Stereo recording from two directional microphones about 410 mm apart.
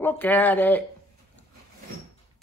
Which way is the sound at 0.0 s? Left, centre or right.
Centre.